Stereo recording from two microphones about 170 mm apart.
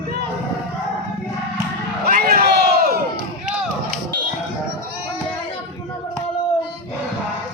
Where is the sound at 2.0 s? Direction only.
60° right (ahead or behind).